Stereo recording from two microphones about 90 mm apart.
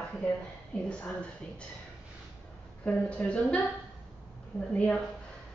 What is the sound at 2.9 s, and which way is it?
Speech, 15° left (ahead or behind).